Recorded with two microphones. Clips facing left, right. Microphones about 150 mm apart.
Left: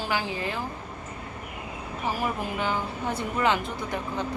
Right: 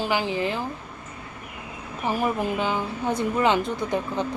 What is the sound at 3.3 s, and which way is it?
Speech, 25° right (ahead or behind).